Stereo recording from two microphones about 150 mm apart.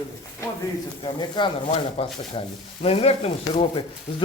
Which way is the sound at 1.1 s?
30° left (ahead or behind).